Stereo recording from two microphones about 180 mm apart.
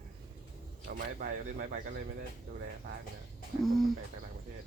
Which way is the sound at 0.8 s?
50° right (ahead or behind).